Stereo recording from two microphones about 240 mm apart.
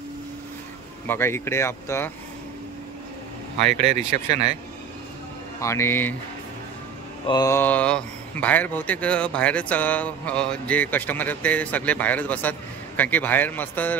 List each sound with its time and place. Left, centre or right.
1.0 s speech: centre
3.7 s speech: right
5.6 s speech: centre
7.2 s speech: centre